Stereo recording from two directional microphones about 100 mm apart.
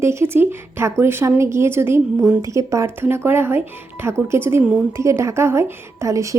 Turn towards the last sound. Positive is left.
turn(degrees=-30)  # may be behind; listen again after turning